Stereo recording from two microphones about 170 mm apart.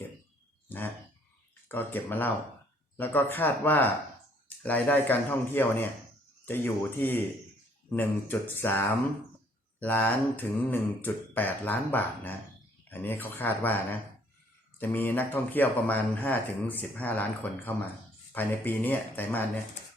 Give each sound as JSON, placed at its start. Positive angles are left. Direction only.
{"t": 1.6, "sound": "speech", "side_deg": 10}
{"t": 14.8, "sound": "speech", "side_deg": 10}